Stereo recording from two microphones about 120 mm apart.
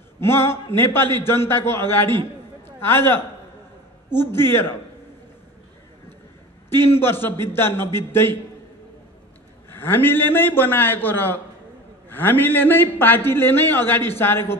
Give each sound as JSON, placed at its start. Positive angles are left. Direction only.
{"t": 0.2, "sound": "a man's voice", "side_deg": 20}
{"t": 6.7, "sound": "a man's voice", "side_deg": 20}
{"t": 9.7, "sound": "a man's voice", "side_deg": 15}